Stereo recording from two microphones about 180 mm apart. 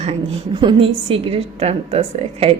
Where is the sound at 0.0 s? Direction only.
35° right (ahead or behind).